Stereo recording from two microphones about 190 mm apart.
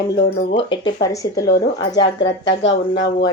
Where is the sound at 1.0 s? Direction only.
20° left (ahead or behind).